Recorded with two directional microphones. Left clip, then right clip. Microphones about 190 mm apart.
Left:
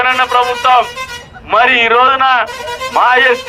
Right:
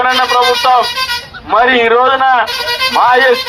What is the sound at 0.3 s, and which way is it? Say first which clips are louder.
A man's voice: even; 15° left (ahead or behind).